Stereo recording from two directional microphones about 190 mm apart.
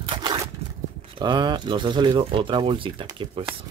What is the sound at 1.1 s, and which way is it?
Speech, 25° right (ahead or behind).